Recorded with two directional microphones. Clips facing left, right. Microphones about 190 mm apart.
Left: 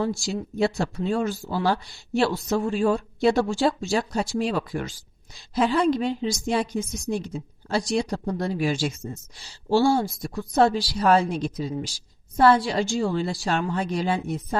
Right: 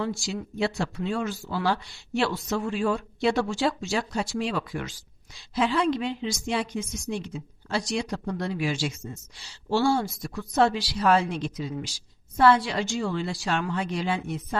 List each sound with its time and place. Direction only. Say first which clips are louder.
0.2 s a woman's voice: left 4 dB; 35° left (ahead or behind)